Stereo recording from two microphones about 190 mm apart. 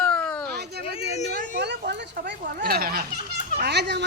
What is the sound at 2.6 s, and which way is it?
Speech, 50° right (ahead or behind).